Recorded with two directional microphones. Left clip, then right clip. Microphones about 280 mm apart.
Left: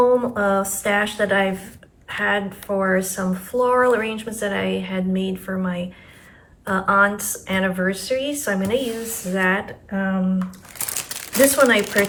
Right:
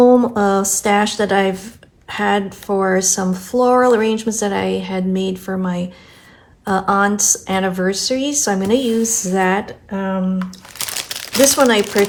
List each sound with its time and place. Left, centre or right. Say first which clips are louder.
0.2 s speech: right 4 dB; centre
10.8 s crumpling: right 6 dB; centre
11.3 s speech: right 3 dB; centre